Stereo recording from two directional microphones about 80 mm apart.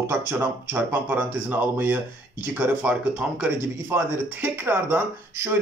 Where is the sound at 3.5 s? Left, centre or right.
Right.